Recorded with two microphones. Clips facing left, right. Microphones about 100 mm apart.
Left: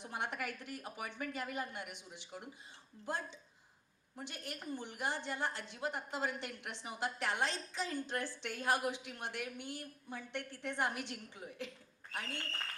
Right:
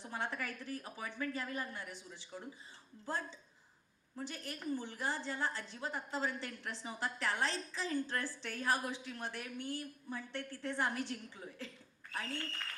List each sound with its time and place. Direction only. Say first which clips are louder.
0.0 s a woman's voice: even; 20° left (ahead or behind)